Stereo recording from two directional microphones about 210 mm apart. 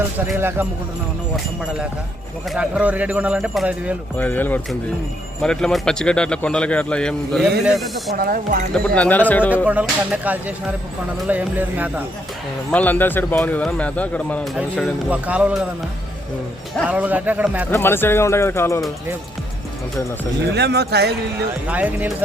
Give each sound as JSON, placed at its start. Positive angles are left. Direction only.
{"t": 0.3, "sound": "a man's voice", "side_deg": -10}
{"t": 2.6, "sound": "a man's voice", "side_deg": -5}
{"t": 4.2, "sound": "a man's voice", "side_deg": 10}
{"t": 8.1, "sound": "speech", "side_deg": -45}
{"t": 9.0, "sound": "speech", "side_deg": 10}
{"t": 9.6, "sound": "a man's voice", "side_deg": -5}
{"t": 12.7, "sound": "speech", "side_deg": 10}
{"t": 14.5, "sound": "a man's voice", "side_deg": -5}
{"t": 16.7, "sound": "a man's voice", "side_deg": -5}
{"t": 17.7, "sound": "speech", "side_deg": 10}
{"t": 20.5, "sound": "speech", "side_deg": -50}
{"t": 21.7, "sound": "a man's voice", "side_deg": -5}